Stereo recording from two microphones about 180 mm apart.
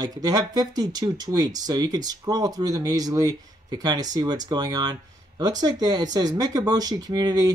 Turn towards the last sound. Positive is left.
turn(degrees=-20)  # may be behind; listen again after turning